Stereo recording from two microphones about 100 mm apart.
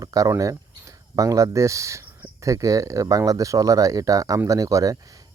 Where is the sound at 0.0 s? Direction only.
35° right (ahead or behind).